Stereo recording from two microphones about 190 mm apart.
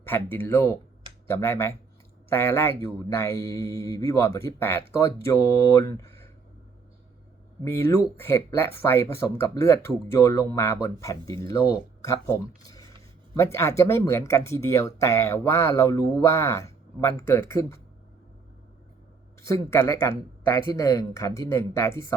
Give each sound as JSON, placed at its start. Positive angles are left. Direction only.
{"t": 0.3, "sound": "speech", "side_deg": 10}
{"t": 7.6, "sound": "speech", "side_deg": 15}
{"t": 19.5, "sound": "speech", "side_deg": 15}